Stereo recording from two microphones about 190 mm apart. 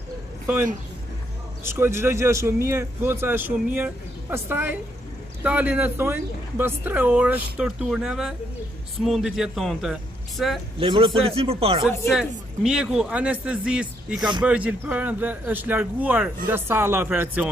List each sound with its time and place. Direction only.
1.6 s speech: 15° right (ahead or behind)
10.8 s speech: 25° right (ahead or behind)
12.1 s speech: centre (ahead or behind)